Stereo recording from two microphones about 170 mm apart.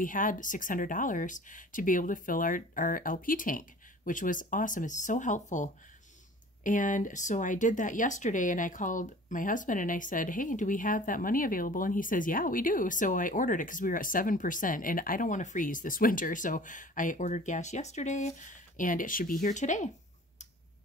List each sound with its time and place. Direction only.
0.0 s speech: 55° left (ahead or behind)